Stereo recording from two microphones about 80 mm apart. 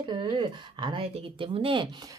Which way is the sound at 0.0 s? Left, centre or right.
Right.